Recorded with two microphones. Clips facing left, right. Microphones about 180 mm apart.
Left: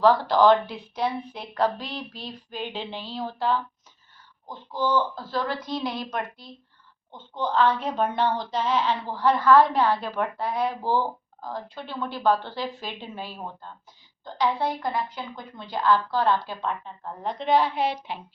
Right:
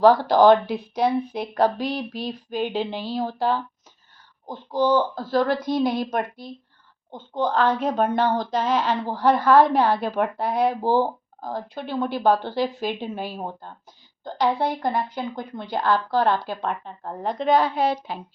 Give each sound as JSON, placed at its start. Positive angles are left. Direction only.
{"t": 0.0, "sound": "a woman's voice", "side_deg": -40}